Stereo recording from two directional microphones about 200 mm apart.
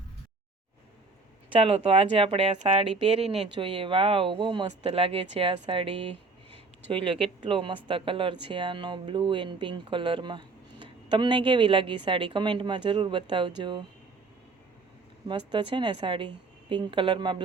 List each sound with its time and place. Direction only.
1.5 s speech: 30° right (ahead or behind)
15.3 s speech: 25° right (ahead or behind)